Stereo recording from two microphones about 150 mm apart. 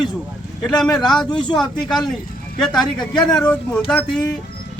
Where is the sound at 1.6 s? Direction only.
5° left (ahead or behind).